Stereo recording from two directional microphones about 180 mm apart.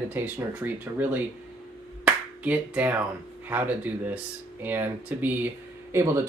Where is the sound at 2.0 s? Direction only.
10° right (ahead or behind).